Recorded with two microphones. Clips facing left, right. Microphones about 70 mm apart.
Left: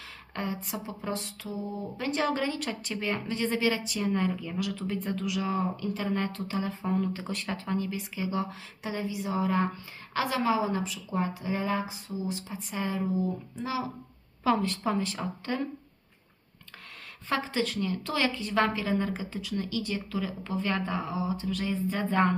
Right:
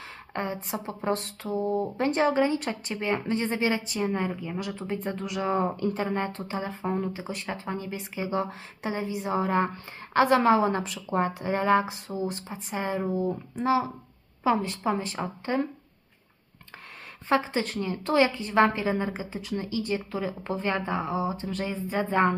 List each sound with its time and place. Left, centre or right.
0.3 s a woman's voice: right
0.9 s a woman's voice: right
2.0 s a woman's voice: right
2.2 s a woman's voice: right
12.7 s a woman's voice: right
13.1 s a woman's voice: right
14.4 s a woman's voice: right
17.2 s a woman's voice: right